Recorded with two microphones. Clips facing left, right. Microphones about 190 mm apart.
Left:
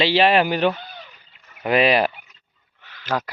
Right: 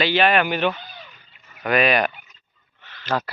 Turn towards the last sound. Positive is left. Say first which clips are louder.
# even
turn(degrees=10)  # may be behind; listen again after turning